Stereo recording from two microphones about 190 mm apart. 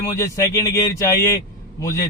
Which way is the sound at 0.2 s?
15° left (ahead or behind).